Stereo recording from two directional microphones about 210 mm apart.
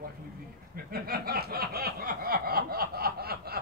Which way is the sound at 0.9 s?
45° right (ahead or behind).